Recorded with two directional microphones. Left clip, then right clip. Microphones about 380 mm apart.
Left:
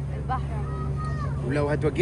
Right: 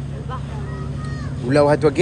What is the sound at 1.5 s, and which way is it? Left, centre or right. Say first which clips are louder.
Speech: right 11 dB; centre.